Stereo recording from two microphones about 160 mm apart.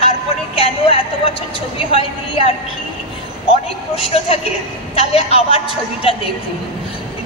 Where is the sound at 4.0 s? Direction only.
35° left (ahead or behind).